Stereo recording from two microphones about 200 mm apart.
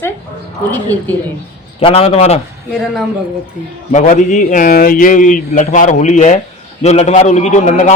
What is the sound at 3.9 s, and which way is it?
A man's voice, 40° left (ahead or behind).